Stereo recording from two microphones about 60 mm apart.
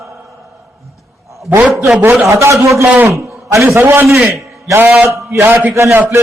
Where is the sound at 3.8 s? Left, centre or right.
Right.